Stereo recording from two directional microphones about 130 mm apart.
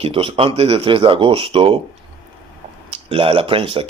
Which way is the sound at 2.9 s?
45° right (ahead or behind).